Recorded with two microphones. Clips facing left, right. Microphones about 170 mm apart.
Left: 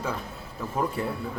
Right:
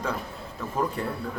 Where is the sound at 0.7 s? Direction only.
10° left (ahead or behind).